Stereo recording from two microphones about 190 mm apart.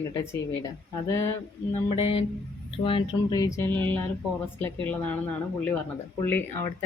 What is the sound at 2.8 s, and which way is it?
Speech, 25° left (ahead or behind).